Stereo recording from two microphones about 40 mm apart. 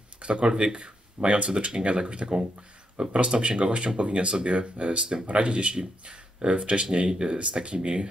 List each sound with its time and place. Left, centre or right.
0.2 s speech: right